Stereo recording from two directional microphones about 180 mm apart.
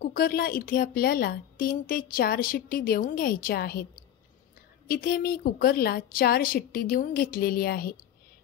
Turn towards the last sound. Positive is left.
turn(degrees=55)  # may be behind; listen again after turning